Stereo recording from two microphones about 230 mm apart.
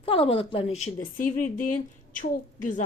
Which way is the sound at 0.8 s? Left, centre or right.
Left.